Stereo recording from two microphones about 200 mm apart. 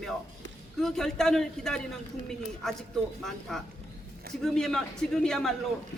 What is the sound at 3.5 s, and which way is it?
A man's voice, centre (ahead or behind).